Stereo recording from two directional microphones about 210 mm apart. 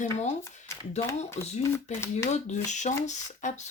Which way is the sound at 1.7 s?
10° left (ahead or behind).